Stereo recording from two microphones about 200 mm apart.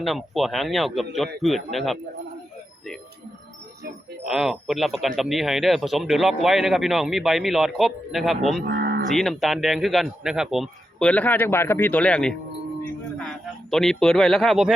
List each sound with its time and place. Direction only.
0.0 s speech: centre (ahead or behind)
4.3 s speech: centre (ahead or behind)
8.6 s cattle: 55° right (ahead or behind)
9.0 s speech: centre (ahead or behind)
13.7 s speech: centre (ahead or behind)